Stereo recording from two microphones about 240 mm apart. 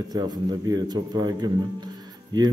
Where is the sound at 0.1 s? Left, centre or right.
Centre.